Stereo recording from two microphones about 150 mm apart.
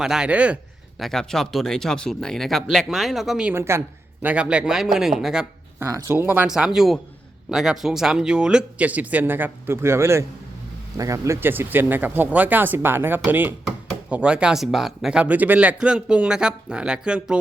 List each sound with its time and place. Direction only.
0.0 s speech: 5° right (ahead or behind)
3.5 s speech: 15° right (ahead or behind)
5.8 s speech: 15° right (ahead or behind)